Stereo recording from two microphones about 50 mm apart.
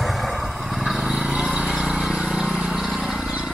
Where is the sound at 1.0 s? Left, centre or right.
Right.